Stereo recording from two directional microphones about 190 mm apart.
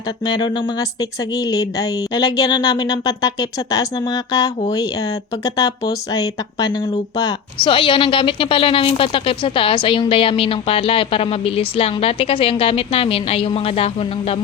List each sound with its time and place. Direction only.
0.3 s speech: 25° left (ahead or behind)
5.5 s speech: 20° left (ahead or behind)